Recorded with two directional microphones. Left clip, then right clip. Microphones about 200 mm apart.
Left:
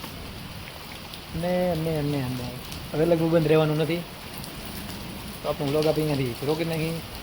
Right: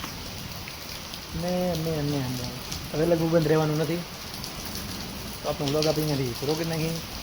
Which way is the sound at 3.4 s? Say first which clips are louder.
Left 2 dB; 5° left (ahead or behind).